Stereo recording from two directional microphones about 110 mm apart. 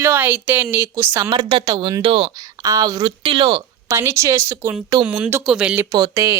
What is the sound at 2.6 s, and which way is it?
Speech, 35° right (ahead or behind).